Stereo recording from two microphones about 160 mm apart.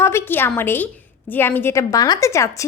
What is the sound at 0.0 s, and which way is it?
A woman's voice, 15° left (ahead or behind).